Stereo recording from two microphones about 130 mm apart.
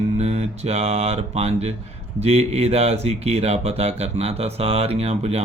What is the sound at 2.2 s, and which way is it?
Speech, 55° right (ahead or behind).